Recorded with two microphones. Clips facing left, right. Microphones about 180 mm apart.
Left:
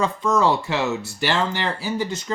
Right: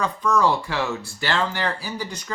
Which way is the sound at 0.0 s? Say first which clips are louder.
Left 1 dB; 25° left (ahead or behind).